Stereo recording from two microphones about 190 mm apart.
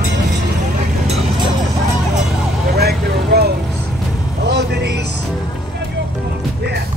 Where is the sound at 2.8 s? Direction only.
55° right (ahead or behind).